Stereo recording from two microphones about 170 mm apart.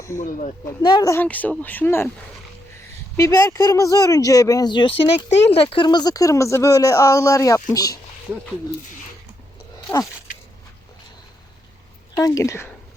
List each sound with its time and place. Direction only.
0.2 s speech: 50° left (ahead or behind)
0.8 s speech: 25° left (ahead or behind)
1.1 s speech: 10° left (ahead or behind)
3.2 s speech: 15° left (ahead or behind)
12.1 s speech: 20° left (ahead or behind)